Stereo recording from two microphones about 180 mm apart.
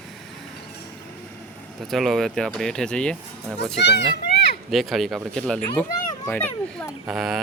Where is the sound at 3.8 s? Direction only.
70° left (ahead or behind).